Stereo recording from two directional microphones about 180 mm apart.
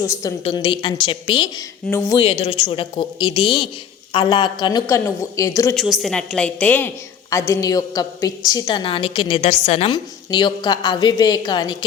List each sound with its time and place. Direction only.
0.0 s a woman's voice: 20° left (ahead or behind)
0.4 s a woman's voice: 30° left (ahead or behind)
2.2 s a woman's voice: 30° left (ahead or behind)
5.7 s a woman's voice: centre (ahead or behind); by 9.9 s 35° left (ahead or behind)
9.9 s a woman's voice: 25° left (ahead or behind)